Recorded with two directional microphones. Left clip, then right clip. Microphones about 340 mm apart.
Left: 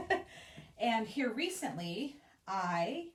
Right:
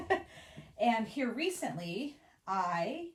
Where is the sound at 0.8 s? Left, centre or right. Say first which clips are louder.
Right 2 dB; centre.